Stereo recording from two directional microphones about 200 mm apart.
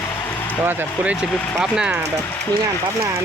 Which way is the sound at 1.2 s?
5° left (ahead or behind).